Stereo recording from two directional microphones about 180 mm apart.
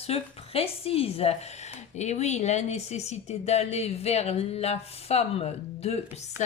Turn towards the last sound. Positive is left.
turn(degrees=40)  # may be behind; listen again after turning